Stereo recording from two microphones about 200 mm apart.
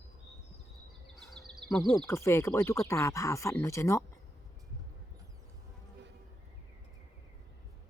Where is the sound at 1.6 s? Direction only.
60° right (ahead or behind).